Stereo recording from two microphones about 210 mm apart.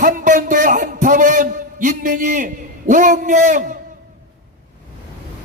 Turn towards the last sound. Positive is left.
turn(degrees=-35)  # may be behind; listen again after turning